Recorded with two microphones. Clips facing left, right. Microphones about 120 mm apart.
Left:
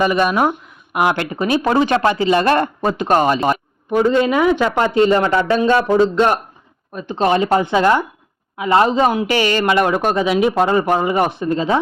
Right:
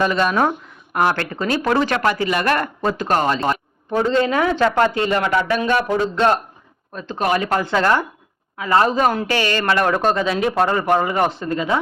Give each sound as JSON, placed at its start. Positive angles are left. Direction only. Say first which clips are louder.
{"t": 0.0, "sound": "speech", "louder": "left 2 dB", "side_deg": 15}